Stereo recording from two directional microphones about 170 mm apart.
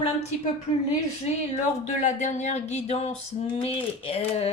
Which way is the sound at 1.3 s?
40° left (ahead or behind).